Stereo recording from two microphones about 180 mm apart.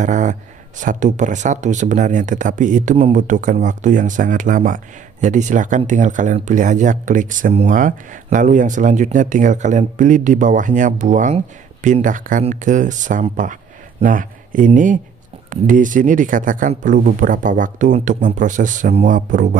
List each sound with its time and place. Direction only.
0.0 s speech: 45° right (ahead or behind)